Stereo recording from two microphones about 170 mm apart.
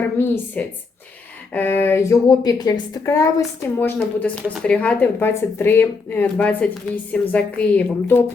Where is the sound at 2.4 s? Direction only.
25° left (ahead or behind).